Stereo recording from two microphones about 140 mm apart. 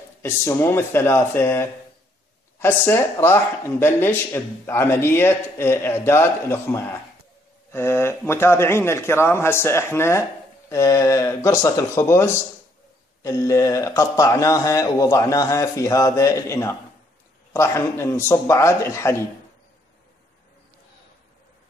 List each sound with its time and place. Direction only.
0.2 s a man's voice: 20° left (ahead or behind)